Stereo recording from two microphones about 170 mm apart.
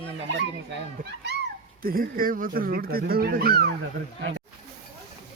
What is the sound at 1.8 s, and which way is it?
Speech, 60° right (ahead or behind).